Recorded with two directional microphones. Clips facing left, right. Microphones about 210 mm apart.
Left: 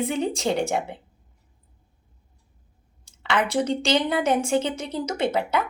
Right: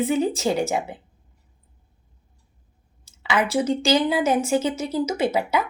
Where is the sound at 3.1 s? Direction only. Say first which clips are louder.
Right 1 dB; 5° right (ahead or behind).